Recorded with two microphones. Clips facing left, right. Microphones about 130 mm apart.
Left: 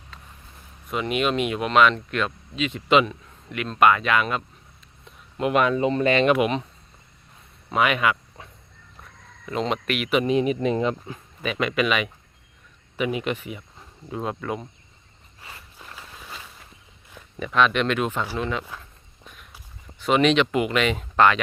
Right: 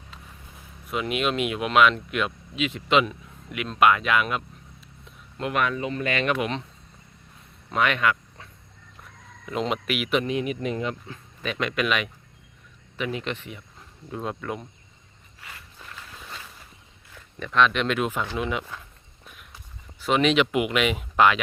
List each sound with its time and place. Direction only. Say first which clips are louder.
0.9 s speech: left 2 dB; centre (ahead or behind)
5.4 s speech: left 5 dB; 20° left (ahead or behind)
7.7 s a sound: left 2 dB; 10° left (ahead or behind)
9.5 s speech: left 1 dB; 5° right (ahead or behind)
10.2 s speech: left 6 dB; 30° left (ahead or behind)
11.4 s speech: left 3 dB; 5° left (ahead or behind)
15.4 s walk: left 1 dB; 30° left (ahead or behind)
16.0 s a sound: even; 5° left (ahead or behind)
17.4 s speech: left 1 dB; 5° left (ahead or behind)
18.3 s speech: even; 15° right (ahead or behind)
18.8 s a sound: left 1 dB; 5° right (ahead or behind)
20.0 s speech: left 2 dB; centre (ahead or behind)